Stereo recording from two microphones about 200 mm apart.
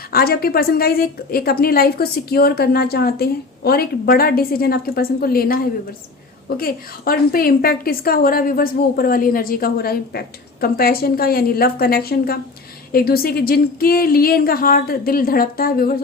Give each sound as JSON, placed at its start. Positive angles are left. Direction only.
{"t": 0.1, "sound": "a woman's voice", "side_deg": 50}
{"t": 6.6, "sound": "a woman's voice", "side_deg": 50}